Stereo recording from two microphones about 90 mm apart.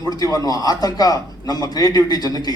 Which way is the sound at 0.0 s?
45° left (ahead or behind).